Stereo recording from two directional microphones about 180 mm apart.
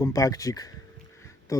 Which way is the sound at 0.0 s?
20° left (ahead or behind).